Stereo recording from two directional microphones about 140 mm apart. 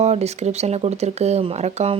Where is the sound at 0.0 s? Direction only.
50° right (ahead or behind).